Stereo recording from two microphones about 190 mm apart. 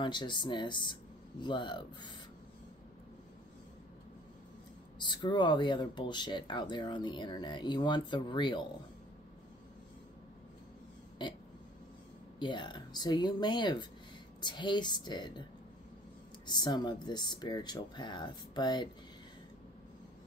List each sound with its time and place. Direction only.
0.0 s speech: 25° left (ahead or behind)
4.9 s speech: 25° left (ahead or behind)
11.2 s burping: 25° left (ahead or behind)
12.4 s speech: 25° left (ahead or behind)
16.4 s speech: 20° left (ahead or behind)